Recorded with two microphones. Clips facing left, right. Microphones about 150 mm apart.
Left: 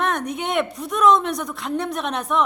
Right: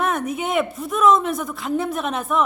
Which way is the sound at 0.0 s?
5° right (ahead or behind).